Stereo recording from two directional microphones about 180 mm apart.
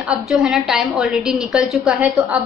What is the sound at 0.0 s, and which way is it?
A woman's voice, 5° right (ahead or behind).